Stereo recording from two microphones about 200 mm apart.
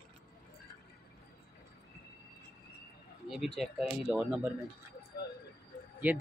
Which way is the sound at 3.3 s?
Centre (ahead or behind).